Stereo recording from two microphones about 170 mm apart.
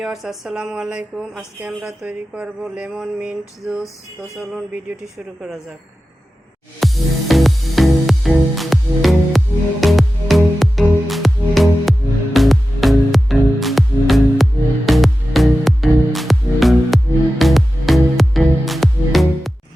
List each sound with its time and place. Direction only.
0.0 s speech: centre (ahead or behind)
6.7 s music: centre (ahead or behind)